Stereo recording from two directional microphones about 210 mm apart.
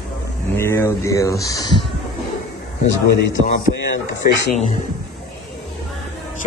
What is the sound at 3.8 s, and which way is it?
Speech, 55° left (ahead or behind).